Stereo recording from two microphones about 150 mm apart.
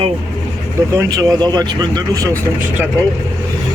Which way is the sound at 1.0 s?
25° right (ahead or behind).